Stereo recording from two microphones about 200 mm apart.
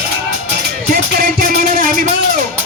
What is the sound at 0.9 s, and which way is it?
Music, 45° right (ahead or behind).